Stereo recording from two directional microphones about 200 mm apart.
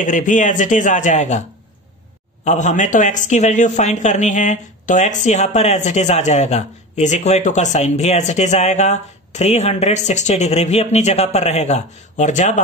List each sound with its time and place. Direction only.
0.0 s speech: 40° left (ahead or behind)
2.4 s speech: 35° left (ahead or behind)